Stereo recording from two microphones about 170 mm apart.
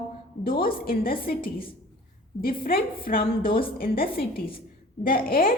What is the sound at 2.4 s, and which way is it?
A woman's voice, 60° left (ahead or behind).